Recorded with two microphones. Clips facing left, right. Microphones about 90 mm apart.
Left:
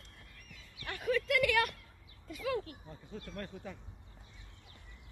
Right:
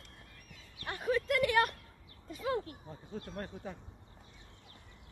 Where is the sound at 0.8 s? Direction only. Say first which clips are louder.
Right 1 dB; 30° right (ahead or behind).